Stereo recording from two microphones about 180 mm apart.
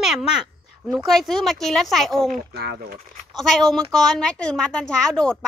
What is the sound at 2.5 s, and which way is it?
Speech, 65° right (ahead or behind).